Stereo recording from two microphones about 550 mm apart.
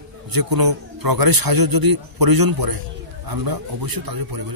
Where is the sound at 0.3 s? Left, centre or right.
Right.